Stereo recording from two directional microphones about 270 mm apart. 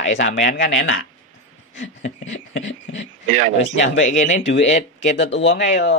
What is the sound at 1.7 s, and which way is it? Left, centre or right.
Speech, left.